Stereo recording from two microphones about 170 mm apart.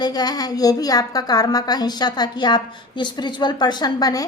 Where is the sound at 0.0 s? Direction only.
25° left (ahead or behind).